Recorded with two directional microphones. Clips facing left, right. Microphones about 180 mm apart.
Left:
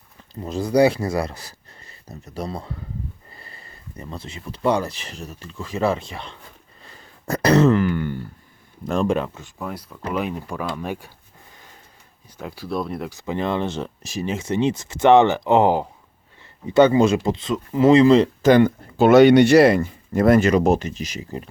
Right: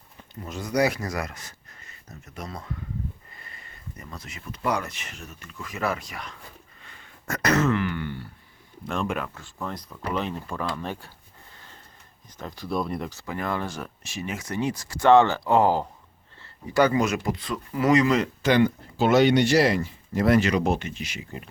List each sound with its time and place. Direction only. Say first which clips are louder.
0.3 s speech: left 7 dB; 30° left (ahead or behind)
6.8 s throat clearing: left 6 dB; 35° left (ahead or behind)
8.9 s speech: left 7 dB; 35° left (ahead or behind)
9.6 s speech: left 2 dB; 5° left (ahead or behind)
11.5 s sniff: left 1 dB; 15° left (ahead or behind)
12.4 s speech: left 2 dB; 10° left (ahead or behind)
13.1 s speech: left 6 dB; 20° left (ahead or behind)
14.0 s speech: left 6 dB; 35° left (ahead or behind)
18.4 s speech: left 6 dB; 50° left (ahead or behind); by 21.5 s 35° left (ahead or behind)